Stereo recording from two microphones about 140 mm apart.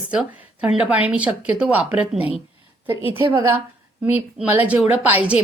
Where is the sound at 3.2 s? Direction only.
35° right (ahead or behind).